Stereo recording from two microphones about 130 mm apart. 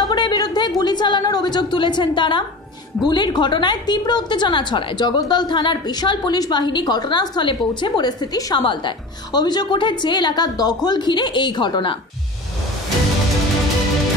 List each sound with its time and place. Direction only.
0.0 s a woman's voice: 30° left (ahead or behind)